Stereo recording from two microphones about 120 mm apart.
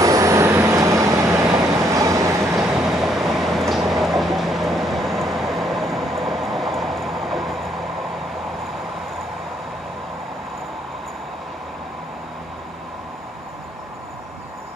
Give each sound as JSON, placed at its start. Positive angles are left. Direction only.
{"t": 0.0, "sound": "vehicle", "side_deg": -25}
{"t": 2.7, "sound": "vehicle", "side_deg": -5}